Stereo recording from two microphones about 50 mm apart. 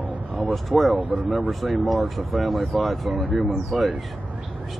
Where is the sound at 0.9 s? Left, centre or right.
Right.